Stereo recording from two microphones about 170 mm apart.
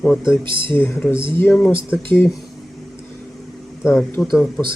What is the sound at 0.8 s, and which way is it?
Speech, 10° left (ahead or behind).